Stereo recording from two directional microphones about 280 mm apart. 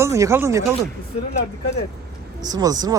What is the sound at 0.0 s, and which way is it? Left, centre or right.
Speech, centre.